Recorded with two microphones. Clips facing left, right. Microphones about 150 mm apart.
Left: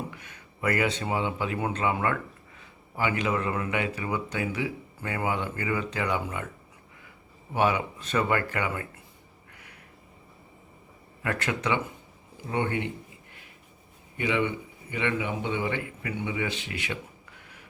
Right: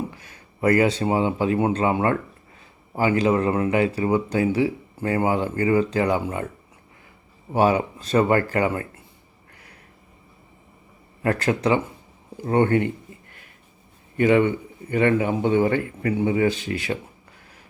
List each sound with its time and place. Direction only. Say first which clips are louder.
0.1 s speech: right 1 dB; 35° right (ahead or behind)
7.5 s speech: right 6 dB; 35° right (ahead or behind)
11.2 s speech: right 8 dB; 35° right (ahead or behind)
12.4 s speech: right 10 dB; 50° right (ahead or behind)
14.2 s speech: right 9 dB; 50° right (ahead or behind)